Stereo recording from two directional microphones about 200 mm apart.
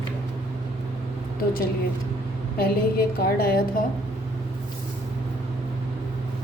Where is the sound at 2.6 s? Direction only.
50° left (ahead or behind).